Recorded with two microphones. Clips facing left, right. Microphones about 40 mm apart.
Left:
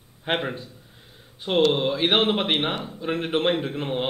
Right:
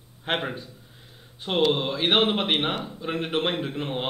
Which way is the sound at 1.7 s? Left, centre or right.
Centre.